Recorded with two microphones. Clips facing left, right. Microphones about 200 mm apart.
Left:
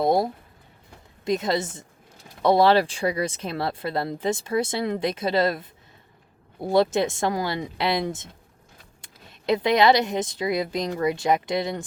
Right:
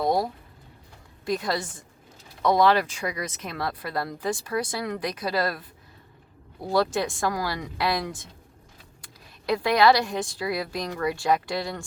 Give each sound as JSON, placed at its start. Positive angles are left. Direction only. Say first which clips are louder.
{"t": 0.0, "sound": "pigeon", "louder": "left 3 dB", "side_deg": 25}
{"t": 1.2, "sound": "speech", "louder": "left 3 dB", "side_deg": 20}
{"t": 9.5, "sound": "speech", "louder": "left 1 dB", "side_deg": 20}